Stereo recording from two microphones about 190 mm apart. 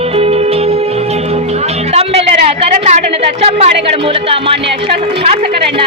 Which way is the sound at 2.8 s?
35° right (ahead or behind).